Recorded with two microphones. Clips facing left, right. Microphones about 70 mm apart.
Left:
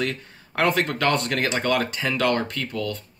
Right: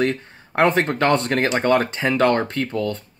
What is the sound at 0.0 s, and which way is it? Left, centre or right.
Speech, right.